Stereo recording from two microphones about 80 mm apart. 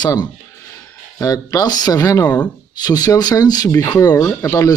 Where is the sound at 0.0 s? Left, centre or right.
Left.